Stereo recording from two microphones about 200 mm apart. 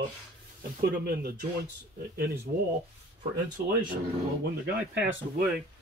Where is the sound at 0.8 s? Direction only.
50° right (ahead or behind).